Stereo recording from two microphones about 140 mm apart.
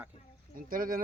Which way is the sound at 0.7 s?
90° right.